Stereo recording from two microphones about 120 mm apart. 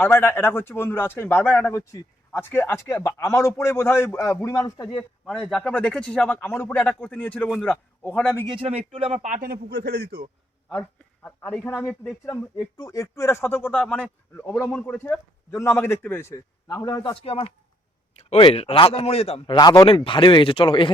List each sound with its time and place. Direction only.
0.0 s a man's voice: 20° left (ahead or behind)
5.2 s a man's voice: centre (ahead or behind)
8.4 s a man's voice: 55° right (ahead or behind)
10.8 s speech: 15° left (ahead or behind)
12.5 s a man's voice: 30° left (ahead or behind); by 14.4 s 10° left (ahead or behind)
14.6 s speech: 5° right (ahead or behind)
14.9 s a man's voice: 15° left (ahead or behind)
16.6 s a man's voice: 30° left (ahead or behind)
17.0 s speech: 45° left (ahead or behind)
18.1 s a sound: 65° left (ahead or behind)
18.5 s speech: 55° left (ahead or behind)
19.5 s a man's voice: 35° left (ahead or behind)
19.9 s speech: 45° left (ahead or behind)